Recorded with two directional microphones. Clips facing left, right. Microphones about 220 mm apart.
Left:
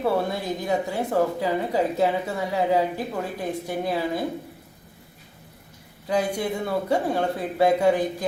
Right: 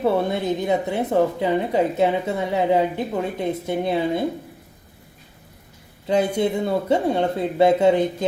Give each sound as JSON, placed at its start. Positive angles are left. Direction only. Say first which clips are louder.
{"t": 0.0, "sound": "speech", "louder": "right 4 dB", "side_deg": -20}
{"t": 6.1, "sound": "speech", "louder": "right 5 dB", "side_deg": -25}